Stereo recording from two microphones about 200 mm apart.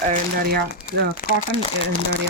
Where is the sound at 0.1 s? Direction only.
50° right (ahead or behind).